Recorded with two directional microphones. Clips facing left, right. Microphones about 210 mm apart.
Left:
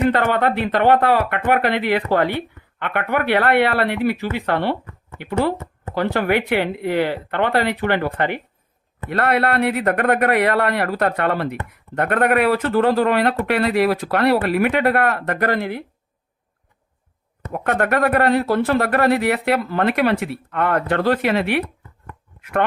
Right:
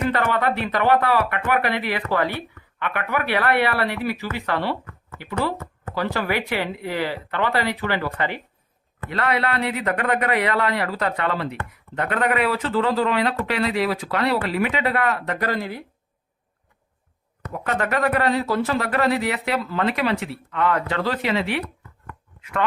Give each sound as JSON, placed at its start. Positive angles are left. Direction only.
{"t": 0.1, "sound": "speech", "side_deg": 55}
{"t": 17.5, "sound": "speech", "side_deg": 60}